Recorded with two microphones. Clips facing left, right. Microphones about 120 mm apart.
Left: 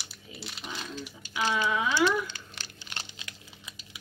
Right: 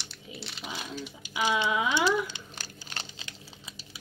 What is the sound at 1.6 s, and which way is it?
Speech, 20° right (ahead or behind).